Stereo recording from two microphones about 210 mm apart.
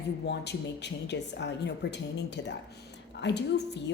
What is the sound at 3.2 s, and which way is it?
Speech, 55° left (ahead or behind).